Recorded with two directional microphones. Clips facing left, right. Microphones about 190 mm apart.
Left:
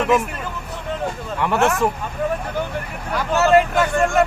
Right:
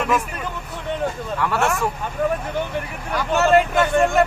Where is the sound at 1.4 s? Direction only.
20° left (ahead or behind).